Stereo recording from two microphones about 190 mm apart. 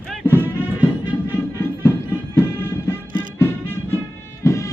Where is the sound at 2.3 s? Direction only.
10° left (ahead or behind).